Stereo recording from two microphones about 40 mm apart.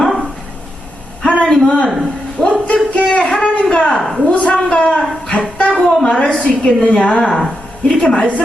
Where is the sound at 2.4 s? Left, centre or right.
Left.